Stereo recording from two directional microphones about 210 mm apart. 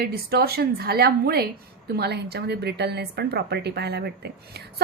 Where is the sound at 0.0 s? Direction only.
50° right (ahead or behind).